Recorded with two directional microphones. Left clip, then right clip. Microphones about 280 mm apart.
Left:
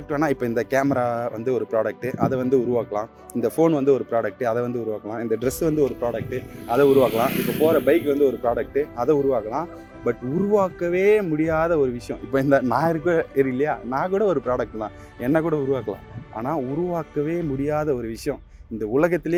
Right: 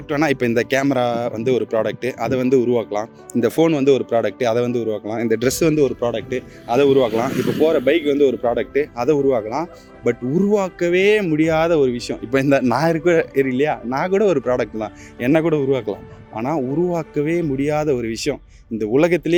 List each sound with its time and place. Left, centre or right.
0.1 s speech: right
17.2 s speech: right
17.7 s speech: right